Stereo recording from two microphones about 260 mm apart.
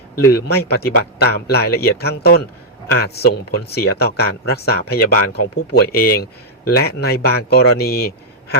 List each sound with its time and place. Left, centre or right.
0.3 s speech: left